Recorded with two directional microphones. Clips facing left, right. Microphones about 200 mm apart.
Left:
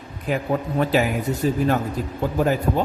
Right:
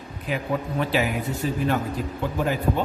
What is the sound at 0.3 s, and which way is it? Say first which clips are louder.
A man's voice: left 4 dB; 45° left (ahead or behind).